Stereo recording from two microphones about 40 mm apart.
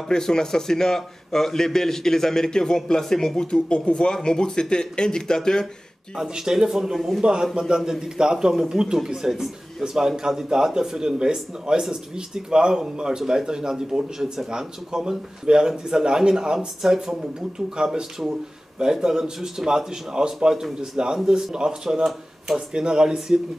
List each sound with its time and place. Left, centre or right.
0.1 s a man's voice: centre
3.5 s speech: left
6.1 s speech: centre